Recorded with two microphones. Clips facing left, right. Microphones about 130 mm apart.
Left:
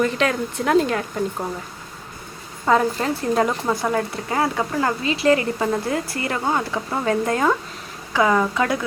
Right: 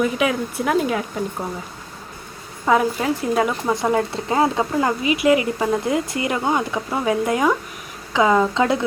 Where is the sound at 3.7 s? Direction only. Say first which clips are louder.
Right 2 dB; 20° right (ahead or behind).